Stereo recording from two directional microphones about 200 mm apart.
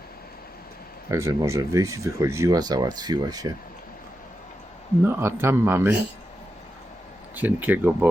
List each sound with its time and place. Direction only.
1.1 s speech: 15° right (ahead or behind)
5.0 s speech: 10° right (ahead or behind)
7.3 s speech: 10° right (ahead or behind)